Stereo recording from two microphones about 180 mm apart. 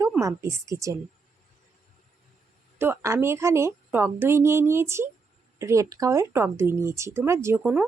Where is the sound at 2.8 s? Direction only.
15° right (ahead or behind).